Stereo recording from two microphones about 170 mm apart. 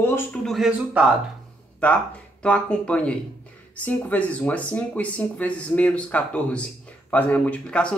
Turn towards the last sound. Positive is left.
turn(degrees=5)  # may be behind; listen again after turning